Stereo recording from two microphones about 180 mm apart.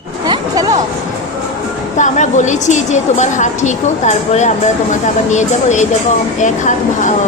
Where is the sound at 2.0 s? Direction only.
40° left (ahead or behind).